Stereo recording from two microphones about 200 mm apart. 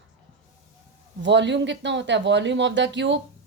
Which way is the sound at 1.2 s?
65° right (ahead or behind).